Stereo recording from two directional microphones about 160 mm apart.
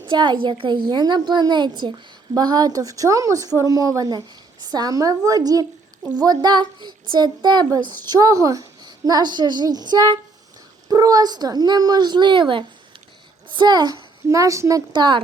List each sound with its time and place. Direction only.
0.0 s a woman's voice: 30° right (ahead or behind)